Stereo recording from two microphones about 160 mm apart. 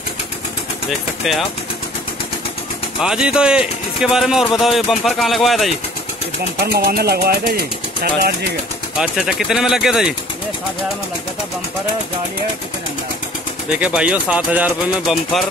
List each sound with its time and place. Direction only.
3.0 s speech: 5° right (ahead or behind)
6.6 s speech: 75° right (ahead or behind)
8.9 s speech: 5° right (ahead or behind)
13.7 s speech: 10° right (ahead or behind)